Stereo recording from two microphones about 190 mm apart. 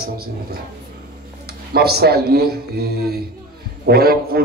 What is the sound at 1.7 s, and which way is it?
A man's voice, 55° right (ahead or behind).